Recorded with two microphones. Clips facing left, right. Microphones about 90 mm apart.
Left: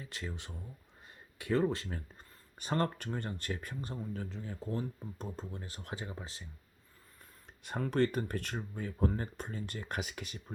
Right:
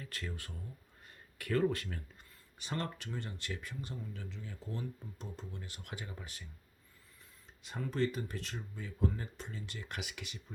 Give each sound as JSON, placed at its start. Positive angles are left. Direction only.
{"t": 0.0, "sound": "speech", "side_deg": 20}
{"t": 2.6, "sound": "speech", "side_deg": 45}
{"t": 7.6, "sound": "speech", "side_deg": 55}